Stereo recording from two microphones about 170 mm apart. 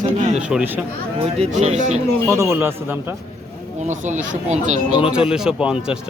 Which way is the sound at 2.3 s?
15° right (ahead or behind).